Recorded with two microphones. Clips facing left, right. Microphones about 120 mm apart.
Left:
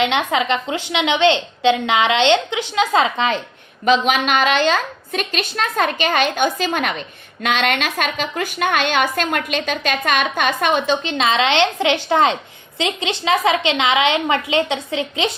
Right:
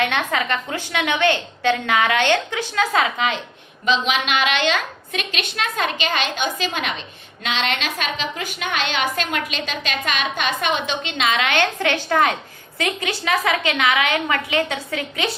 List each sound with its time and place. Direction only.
0.0 s a woman's voice: 15° left (ahead or behind)
3.8 s a woman's voice: 45° left (ahead or behind); by 15.3 s 25° left (ahead or behind)